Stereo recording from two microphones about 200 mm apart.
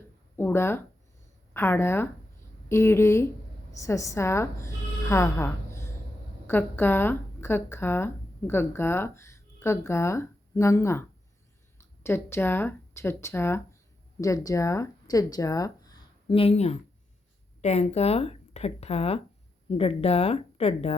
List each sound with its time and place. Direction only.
0.3 s a woman's voice: 10° left (ahead or behind)
12.0 s speech: 10° left (ahead or behind)
16.3 s speech: 30° left (ahead or behind)